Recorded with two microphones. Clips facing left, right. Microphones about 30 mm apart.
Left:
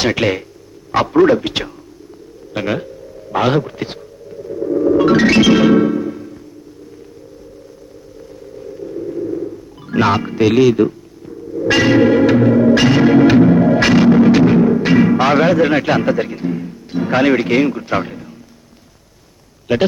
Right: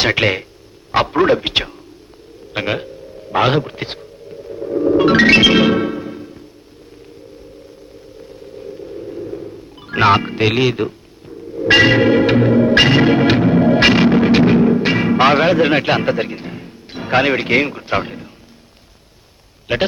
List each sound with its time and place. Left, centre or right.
0.0 s a man's voice: right
4.4 s a sound: centre
4.9 s music: right
8.6 s a sound: centre
9.9 s speech: right
11.3 s music: centre
11.7 s a man's voice: right
12.5 s music: centre
12.7 s speech: right
13.4 s a man's voice: right
13.7 s music: right
14.8 s speech: right
19.7 s a man's voice: right